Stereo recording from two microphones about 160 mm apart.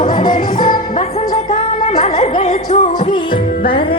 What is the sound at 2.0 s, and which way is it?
Music, 40° left (ahead or behind).